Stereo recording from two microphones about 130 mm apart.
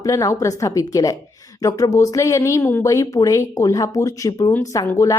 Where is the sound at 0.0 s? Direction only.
25° left (ahead or behind).